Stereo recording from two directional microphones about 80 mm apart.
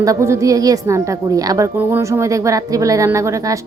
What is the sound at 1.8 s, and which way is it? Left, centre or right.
Speech, right.